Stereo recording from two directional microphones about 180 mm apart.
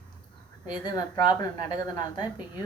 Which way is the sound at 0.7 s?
25° left (ahead or behind).